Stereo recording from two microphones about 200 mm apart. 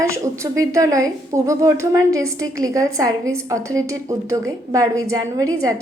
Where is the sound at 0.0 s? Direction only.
15° right (ahead or behind).